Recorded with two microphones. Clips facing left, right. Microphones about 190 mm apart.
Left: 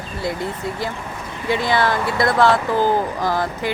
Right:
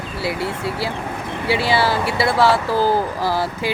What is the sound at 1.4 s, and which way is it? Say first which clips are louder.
Speech: even; 10° right (ahead or behind).